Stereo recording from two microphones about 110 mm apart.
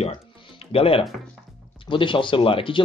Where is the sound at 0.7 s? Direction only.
60° left (ahead or behind).